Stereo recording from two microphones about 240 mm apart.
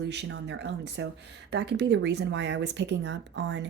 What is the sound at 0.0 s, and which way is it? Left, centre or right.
Speech, right.